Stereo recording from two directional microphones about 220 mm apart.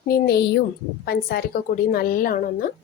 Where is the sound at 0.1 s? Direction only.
45° left (ahead or behind).